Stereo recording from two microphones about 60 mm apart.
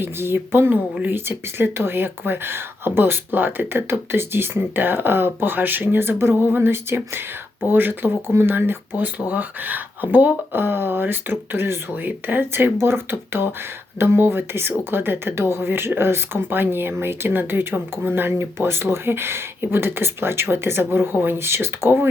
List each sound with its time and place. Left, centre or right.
0.0 s speech: right